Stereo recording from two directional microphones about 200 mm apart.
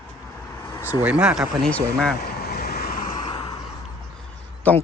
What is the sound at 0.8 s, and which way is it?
Speech, 5° right (ahead or behind).